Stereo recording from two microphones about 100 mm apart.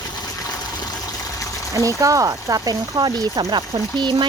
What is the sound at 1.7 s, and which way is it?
Speech, 35° right (ahead or behind).